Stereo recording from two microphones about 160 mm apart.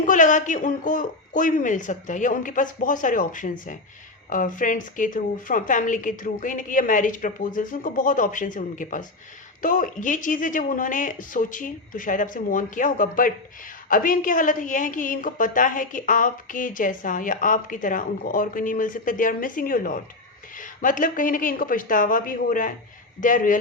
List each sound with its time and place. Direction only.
0.0 s a woman's voice: 55° left (ahead or behind)